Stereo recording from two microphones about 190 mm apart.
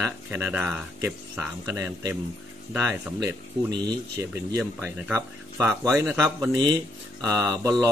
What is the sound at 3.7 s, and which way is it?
Speech, 20° right (ahead or behind).